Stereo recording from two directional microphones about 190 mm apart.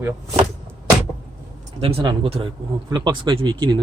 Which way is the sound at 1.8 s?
30° right (ahead or behind).